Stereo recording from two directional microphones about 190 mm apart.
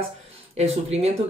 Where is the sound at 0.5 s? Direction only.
35° right (ahead or behind).